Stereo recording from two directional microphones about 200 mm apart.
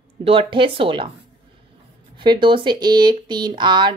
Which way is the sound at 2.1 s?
25° right (ahead or behind).